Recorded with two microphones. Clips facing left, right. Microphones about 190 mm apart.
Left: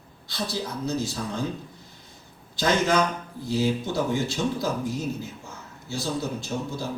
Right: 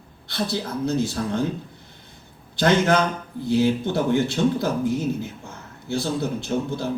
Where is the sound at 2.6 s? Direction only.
60° right (ahead or behind).